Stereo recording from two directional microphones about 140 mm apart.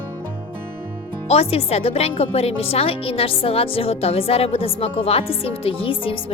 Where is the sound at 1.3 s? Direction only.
45° left (ahead or behind).